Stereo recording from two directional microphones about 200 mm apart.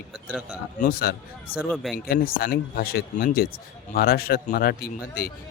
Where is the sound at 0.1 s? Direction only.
5° right (ahead or behind).